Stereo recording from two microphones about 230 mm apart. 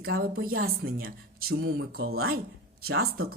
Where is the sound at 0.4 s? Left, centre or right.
Right.